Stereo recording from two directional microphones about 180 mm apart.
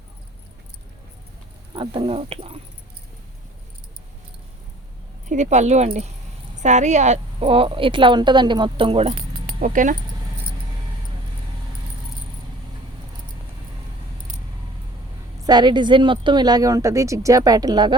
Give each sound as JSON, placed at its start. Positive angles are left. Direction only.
{"t": 1.7, "sound": "speech", "side_deg": -30}
{"t": 5.3, "sound": "a woman's voice", "side_deg": -40}
{"t": 9.6, "sound": "speech", "side_deg": -45}
{"t": 15.4, "sound": "a woman's voice", "side_deg": -25}